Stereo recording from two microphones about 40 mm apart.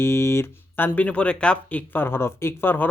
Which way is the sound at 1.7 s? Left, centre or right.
Left.